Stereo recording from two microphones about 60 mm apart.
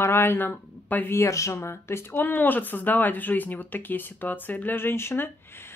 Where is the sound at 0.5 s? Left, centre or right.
Left.